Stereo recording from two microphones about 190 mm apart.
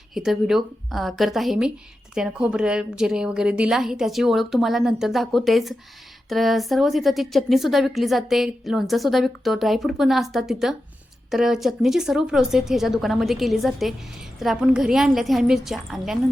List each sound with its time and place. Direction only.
0.1 s a woman's voice: centre (ahead or behind)